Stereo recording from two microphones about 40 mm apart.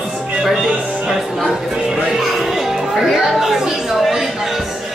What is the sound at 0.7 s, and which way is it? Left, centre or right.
Music, right.